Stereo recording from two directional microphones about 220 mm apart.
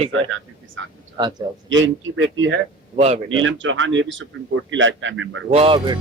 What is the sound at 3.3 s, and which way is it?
Speech, 60° right (ahead or behind).